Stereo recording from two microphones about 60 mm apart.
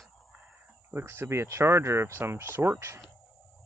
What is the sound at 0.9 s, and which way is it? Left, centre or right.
Speech, right.